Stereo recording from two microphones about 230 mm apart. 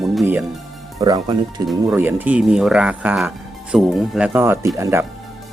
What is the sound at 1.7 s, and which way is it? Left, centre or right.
Speech, centre.